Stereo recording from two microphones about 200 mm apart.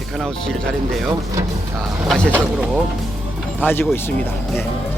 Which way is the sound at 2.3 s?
5° right (ahead or behind).